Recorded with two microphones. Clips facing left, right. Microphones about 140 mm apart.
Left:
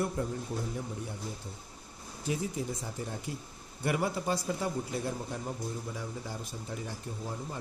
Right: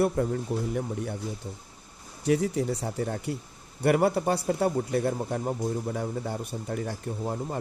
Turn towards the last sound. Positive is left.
turn(degrees=-55)  # may be behind; listen again after turning